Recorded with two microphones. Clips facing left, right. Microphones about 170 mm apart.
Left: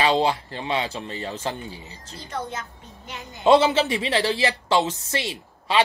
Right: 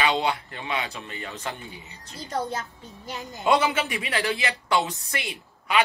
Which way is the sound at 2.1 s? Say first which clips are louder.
Right 2 dB; 40° right (ahead or behind).